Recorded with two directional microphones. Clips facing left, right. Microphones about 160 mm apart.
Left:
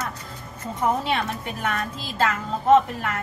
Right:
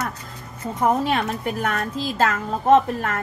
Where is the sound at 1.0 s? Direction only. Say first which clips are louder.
Right 4 dB; 45° right (ahead or behind).